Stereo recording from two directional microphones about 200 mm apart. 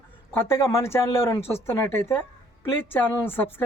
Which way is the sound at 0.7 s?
15° left (ahead or behind).